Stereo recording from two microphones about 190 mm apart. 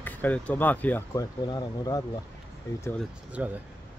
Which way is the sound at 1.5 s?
20° left (ahead or behind).